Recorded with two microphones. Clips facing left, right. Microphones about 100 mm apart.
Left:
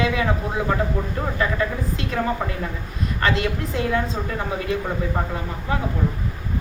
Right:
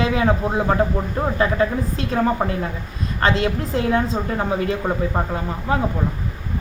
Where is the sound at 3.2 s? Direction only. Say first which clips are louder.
Right 3 dB; 30° right (ahead or behind).